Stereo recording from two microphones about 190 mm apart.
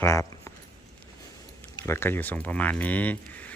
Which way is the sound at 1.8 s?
10° left (ahead or behind).